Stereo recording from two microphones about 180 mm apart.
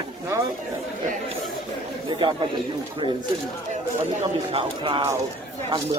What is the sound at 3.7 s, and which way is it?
Speech, 35° right (ahead or behind).